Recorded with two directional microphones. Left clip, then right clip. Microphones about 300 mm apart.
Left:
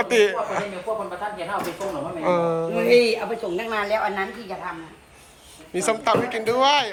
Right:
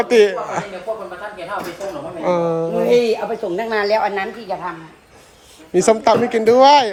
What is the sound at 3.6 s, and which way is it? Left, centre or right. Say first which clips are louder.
Speech: right 7 dB; right.